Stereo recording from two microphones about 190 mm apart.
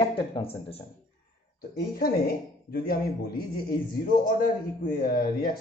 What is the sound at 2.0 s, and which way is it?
A woman's voice, 50° left (ahead or behind).